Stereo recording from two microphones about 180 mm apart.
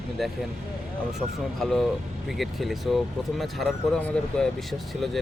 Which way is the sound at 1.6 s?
Centre (ahead or behind).